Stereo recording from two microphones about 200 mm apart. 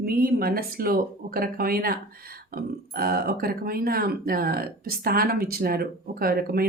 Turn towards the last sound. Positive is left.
turn(degrees=-50)  # may be behind; listen again after turning